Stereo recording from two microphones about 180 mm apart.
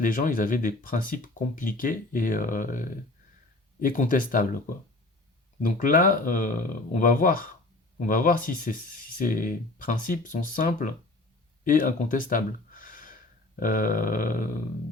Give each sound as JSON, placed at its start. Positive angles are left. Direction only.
{"t": 0.0, "sound": "speech", "side_deg": 50}